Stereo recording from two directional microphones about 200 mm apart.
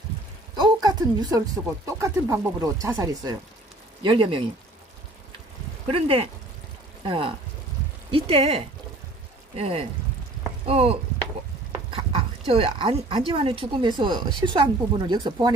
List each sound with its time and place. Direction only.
0.6 s speech: 20° right (ahead or behind)
5.9 s speech: 30° right (ahead or behind)